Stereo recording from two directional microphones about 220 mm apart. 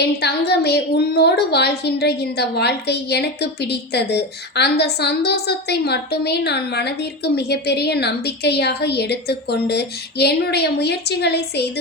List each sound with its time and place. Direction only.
0.0 s a woman's voice: 50° left (ahead or behind)